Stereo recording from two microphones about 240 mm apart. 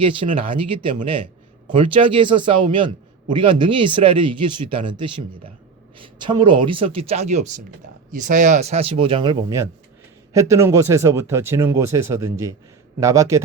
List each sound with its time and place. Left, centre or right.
0.0 s a man's voice: right